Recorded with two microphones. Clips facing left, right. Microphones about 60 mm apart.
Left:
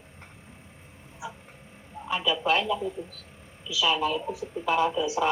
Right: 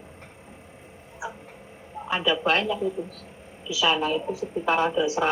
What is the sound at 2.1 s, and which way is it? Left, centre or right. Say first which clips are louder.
Speech: right 2 dB; right.